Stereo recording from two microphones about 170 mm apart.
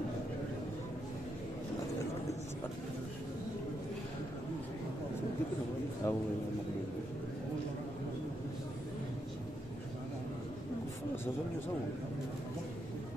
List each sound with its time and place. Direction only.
6.0 s a man's voice: 15° left (ahead or behind)